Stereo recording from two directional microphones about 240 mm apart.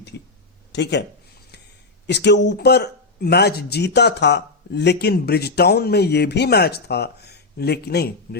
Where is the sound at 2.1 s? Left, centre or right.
Left.